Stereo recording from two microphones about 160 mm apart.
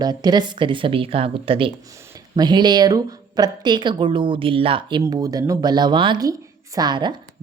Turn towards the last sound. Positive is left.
turn(degrees=-30)  # may be behind; listen again after turning